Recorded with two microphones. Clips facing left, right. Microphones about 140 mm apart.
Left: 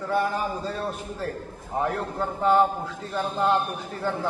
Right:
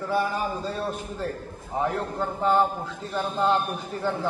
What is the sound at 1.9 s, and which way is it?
A man's voice, 5° left (ahead or behind).